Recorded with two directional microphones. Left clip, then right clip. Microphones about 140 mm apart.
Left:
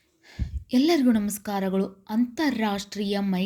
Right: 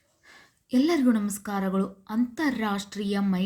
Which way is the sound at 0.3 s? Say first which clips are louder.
Left 1 dB; 20° left (ahead or behind).